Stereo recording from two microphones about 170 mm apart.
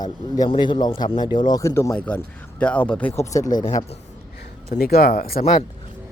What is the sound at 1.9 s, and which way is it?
Speech, 5° left (ahead or behind).